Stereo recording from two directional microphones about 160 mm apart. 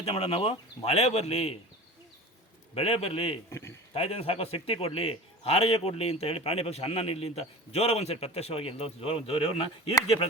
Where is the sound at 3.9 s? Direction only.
40° left (ahead or behind).